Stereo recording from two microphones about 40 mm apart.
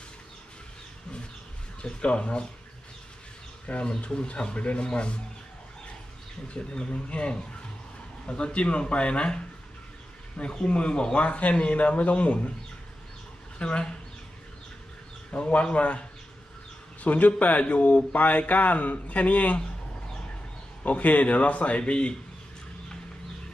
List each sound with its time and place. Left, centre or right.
1.8 s a man's voice: left
3.6 s a man's voice: left
6.5 s a man's voice: left
13.6 s a man's voice: left
15.3 s a man's voice: left
17.0 s a man's voice: left
20.8 s a man's voice: left